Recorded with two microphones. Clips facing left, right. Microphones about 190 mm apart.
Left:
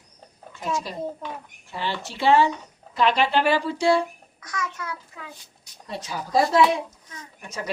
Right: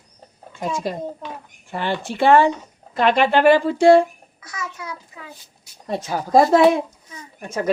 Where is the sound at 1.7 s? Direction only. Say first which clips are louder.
Right 6 dB; 55° right (ahead or behind).